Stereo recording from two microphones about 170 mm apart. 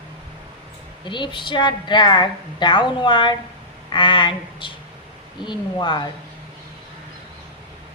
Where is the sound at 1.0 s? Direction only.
30° left (ahead or behind).